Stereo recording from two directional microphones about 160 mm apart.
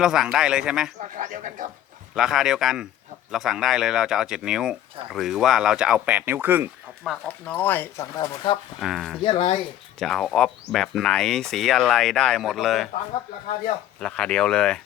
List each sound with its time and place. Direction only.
0.0 s speech: 5° right (ahead or behind)
1.1 s speech: 55° right (ahead or behind)
2.1 s speech: centre (ahead or behind)
7.0 s speech: 5° left (ahead or behind)
8.1 s speech: 25° left (ahead or behind)
8.8 s speech: centre (ahead or behind)
9.2 s speech: 35° left (ahead or behind)
10.0 s speech: centre (ahead or behind)
14.0 s speech: 5° left (ahead or behind)